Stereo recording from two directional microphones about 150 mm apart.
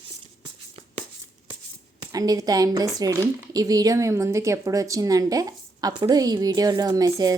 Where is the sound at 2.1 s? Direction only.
25° right (ahead or behind).